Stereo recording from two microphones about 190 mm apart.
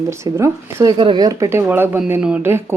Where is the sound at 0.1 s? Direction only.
15° right (ahead or behind).